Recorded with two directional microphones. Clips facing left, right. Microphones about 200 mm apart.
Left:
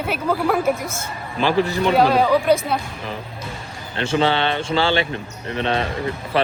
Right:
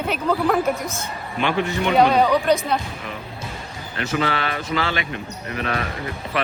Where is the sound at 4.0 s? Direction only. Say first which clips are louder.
Left 4 dB; 30° left (ahead or behind).